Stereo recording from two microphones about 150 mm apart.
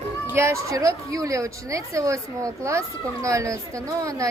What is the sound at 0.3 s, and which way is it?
A woman's voice, 20° right (ahead or behind).